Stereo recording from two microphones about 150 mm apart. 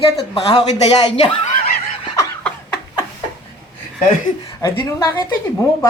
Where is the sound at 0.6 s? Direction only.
45° left (ahead or behind).